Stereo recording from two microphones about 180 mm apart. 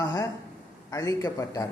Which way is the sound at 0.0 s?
20° left (ahead or behind).